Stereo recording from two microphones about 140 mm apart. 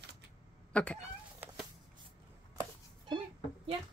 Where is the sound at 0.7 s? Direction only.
10° left (ahead or behind).